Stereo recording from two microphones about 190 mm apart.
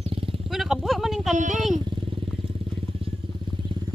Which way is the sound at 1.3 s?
40° right (ahead or behind).